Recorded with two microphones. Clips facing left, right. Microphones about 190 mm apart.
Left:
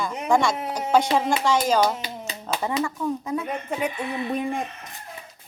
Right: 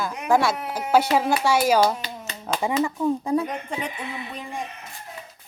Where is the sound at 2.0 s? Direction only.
10° left (ahead or behind).